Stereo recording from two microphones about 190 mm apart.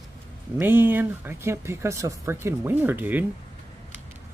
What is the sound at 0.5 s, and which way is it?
Speech, 10° right (ahead or behind).